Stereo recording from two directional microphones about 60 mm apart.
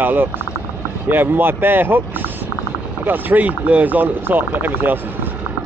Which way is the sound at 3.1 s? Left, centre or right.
Right.